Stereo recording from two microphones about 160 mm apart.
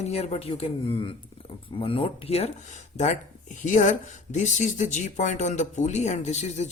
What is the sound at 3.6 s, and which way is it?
Speech, 50° left (ahead or behind).